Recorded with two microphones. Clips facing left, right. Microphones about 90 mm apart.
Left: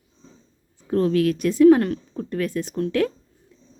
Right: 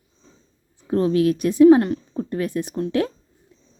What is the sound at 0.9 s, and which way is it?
Speech, 25° right (ahead or behind).